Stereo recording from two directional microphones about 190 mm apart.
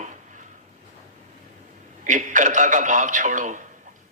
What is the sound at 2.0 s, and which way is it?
Speech, 40° right (ahead or behind).